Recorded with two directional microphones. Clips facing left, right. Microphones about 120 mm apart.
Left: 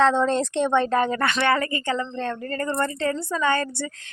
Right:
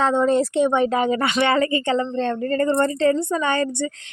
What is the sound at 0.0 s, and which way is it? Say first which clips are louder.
A woman's voice: right 2 dB; 10° right (ahead or behind).